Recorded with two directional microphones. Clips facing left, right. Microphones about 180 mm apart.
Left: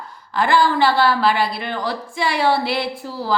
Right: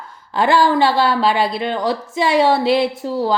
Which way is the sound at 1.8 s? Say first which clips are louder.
Right 4 dB; 20° right (ahead or behind).